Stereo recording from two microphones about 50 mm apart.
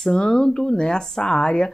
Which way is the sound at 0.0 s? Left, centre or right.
Centre.